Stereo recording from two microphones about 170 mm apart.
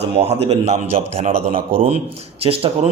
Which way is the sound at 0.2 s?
35° right (ahead or behind).